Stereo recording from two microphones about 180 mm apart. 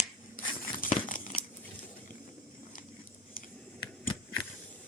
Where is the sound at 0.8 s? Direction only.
50° left (ahead or behind).